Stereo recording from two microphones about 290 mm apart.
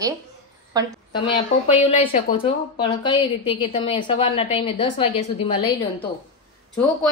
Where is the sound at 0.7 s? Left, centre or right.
Centre.